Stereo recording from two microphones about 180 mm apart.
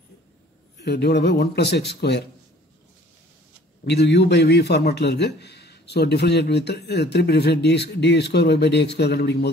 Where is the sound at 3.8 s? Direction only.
65° left (ahead or behind).